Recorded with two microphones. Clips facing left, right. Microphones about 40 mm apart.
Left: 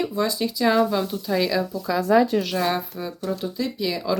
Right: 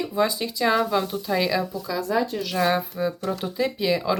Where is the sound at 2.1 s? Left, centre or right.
Left.